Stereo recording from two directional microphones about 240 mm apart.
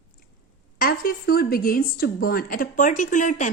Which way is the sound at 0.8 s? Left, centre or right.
Left.